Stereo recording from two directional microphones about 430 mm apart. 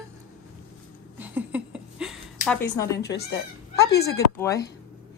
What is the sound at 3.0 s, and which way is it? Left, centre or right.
Speech, left.